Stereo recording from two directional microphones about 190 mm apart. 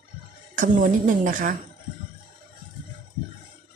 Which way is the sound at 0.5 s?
45° right (ahead or behind).